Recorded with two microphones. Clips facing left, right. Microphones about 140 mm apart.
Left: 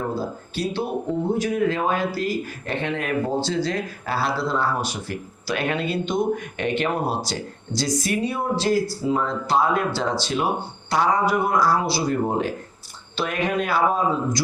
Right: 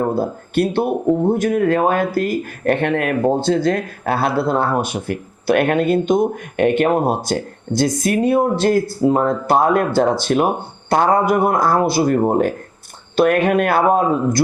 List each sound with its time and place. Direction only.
0.0 s a man's voice: 55° right (ahead or behind)